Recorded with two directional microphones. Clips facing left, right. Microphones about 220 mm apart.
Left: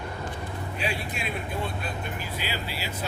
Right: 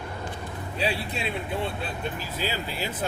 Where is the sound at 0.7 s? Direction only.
35° right (ahead or behind).